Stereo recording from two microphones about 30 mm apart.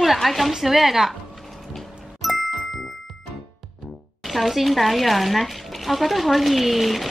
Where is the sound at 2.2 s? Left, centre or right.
Centre.